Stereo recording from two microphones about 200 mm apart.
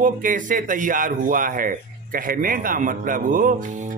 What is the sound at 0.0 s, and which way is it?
Speech, 40° right (ahead or behind).